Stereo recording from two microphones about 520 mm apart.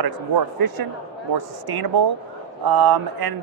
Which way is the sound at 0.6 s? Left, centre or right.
Right.